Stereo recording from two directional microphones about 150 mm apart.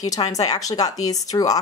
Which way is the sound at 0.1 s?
25° left (ahead or behind).